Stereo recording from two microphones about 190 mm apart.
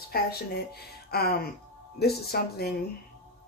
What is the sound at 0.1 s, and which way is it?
Speech, 55° left (ahead or behind).